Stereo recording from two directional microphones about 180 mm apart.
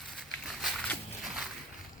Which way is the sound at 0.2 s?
Centre (ahead or behind).